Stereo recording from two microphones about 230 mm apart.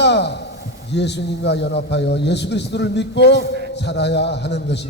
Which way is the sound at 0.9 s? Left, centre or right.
Left.